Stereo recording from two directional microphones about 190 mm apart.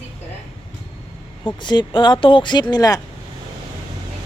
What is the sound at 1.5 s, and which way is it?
Speech, 25° left (ahead or behind).